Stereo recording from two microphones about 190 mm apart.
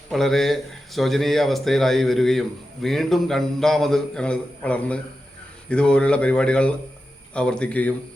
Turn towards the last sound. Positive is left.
turn(degrees=10)  # may be behind; listen again after turning